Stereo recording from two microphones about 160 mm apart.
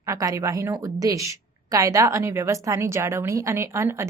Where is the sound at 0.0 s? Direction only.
20° right (ahead or behind).